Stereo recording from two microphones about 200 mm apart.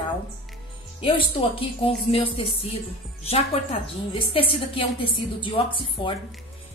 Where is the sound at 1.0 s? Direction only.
25° left (ahead or behind).